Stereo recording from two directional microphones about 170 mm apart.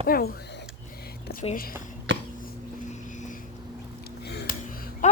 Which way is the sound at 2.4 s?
50° left (ahead or behind).